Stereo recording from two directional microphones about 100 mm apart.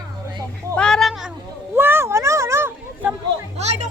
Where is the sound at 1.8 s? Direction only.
25° right (ahead or behind).